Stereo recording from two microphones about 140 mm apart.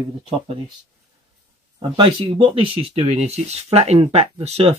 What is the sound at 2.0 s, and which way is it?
Speech, 35° right (ahead or behind).